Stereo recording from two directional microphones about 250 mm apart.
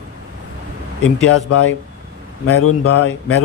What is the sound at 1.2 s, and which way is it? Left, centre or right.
Speech, left.